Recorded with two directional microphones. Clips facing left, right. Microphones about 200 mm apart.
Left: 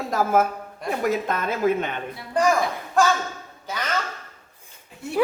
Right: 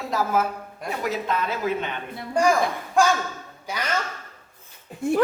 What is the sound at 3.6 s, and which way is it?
Speech, 10° right (ahead or behind).